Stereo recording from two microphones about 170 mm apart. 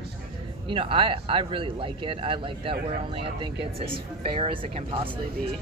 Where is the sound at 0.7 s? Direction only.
30° right (ahead or behind).